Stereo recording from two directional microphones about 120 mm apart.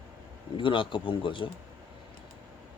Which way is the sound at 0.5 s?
45° left (ahead or behind).